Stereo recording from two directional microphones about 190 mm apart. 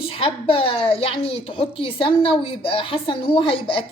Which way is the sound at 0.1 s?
30° left (ahead or behind).